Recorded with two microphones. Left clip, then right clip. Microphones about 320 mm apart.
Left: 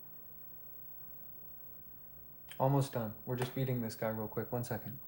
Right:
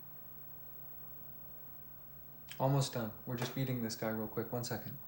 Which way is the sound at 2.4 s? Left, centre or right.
Left.